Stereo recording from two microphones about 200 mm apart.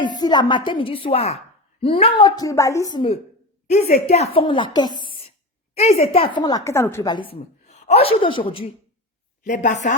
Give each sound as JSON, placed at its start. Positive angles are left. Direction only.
{"t": 0.2, "sound": "a woman's voice", "side_deg": 20}
{"t": 3.7, "sound": "a woman's voice", "side_deg": 35}
{"t": 7.3, "sound": "a woman's voice", "side_deg": 30}
{"t": 9.4, "sound": "speech", "side_deg": 40}
{"t": 9.8, "sound": "chopping", "side_deg": 45}